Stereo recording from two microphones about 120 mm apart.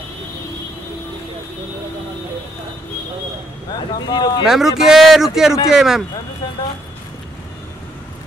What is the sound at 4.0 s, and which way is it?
Speech, 35° left (ahead or behind).